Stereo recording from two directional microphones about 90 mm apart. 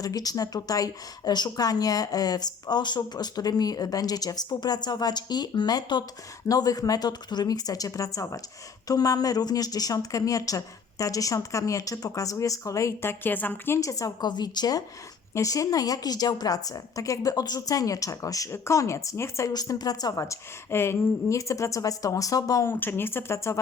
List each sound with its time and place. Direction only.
0.0 s a woman's voice: 45° left (ahead or behind); by 13.7 s 20° left (ahead or behind)
13.7 s a woman's voice: 40° left (ahead or behind)
19.5 s a woman's voice: 45° left (ahead or behind)
22.7 s speech: 20° left (ahead or behind)